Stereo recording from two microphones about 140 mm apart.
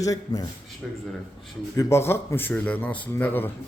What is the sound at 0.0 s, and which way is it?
Speech, 25° left (ahead or behind).